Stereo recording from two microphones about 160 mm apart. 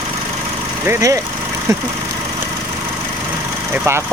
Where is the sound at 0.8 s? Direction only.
20° right (ahead or behind).